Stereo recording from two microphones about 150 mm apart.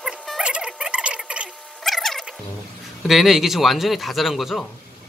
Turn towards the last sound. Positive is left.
turn(degrees=0)  # may be behind; listen again after turning